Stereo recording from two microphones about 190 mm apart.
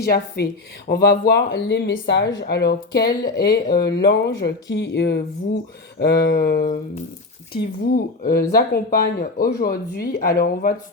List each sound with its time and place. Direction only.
0.0 s speech: 55° left (ahead or behind)